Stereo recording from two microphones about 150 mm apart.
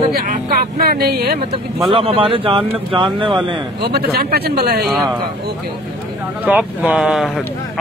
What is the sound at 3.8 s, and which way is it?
Speech, 90° right.